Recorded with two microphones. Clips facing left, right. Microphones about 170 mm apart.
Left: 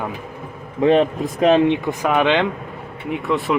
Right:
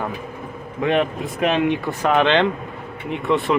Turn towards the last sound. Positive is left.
turn(degrees=0)  # may be behind; listen again after turning